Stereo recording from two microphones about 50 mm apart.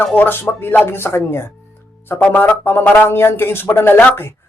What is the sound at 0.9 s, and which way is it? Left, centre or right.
A man's voice, left.